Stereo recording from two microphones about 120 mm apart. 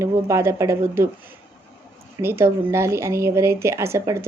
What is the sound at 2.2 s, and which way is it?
Speech, 20° right (ahead or behind).